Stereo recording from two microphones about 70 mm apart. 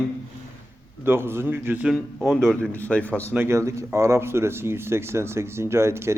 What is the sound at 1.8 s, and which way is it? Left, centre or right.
Speech, centre.